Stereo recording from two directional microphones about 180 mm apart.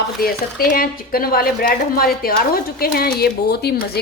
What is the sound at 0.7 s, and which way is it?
A woman's voice, 55° left (ahead or behind).